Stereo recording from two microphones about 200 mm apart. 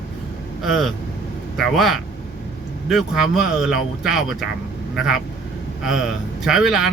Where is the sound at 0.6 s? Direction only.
Centre (ahead or behind).